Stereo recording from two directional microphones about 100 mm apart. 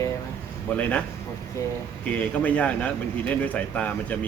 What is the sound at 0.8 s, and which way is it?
Speech, 15° left (ahead or behind).